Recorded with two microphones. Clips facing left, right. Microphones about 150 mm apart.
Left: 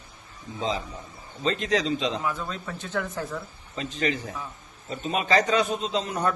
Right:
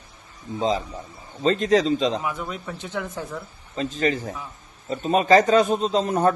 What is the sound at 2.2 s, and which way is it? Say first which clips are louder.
Speech: right 1 dB; 15° right (ahead or behind).